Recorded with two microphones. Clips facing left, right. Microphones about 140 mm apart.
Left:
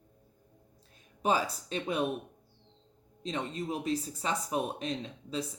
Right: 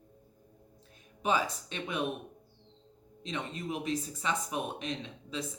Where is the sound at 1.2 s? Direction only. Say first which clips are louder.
Left 1 dB; 35° left (ahead or behind).